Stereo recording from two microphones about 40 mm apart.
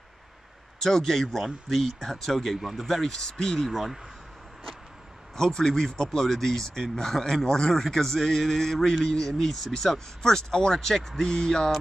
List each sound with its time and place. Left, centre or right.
0.7 s speech: centre
3.6 s speech: centre
5.3 s speech: centre
8.9 s speech: centre
9.3 s speech: centre